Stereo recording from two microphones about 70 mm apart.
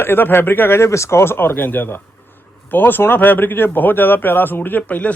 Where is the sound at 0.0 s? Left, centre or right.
Left.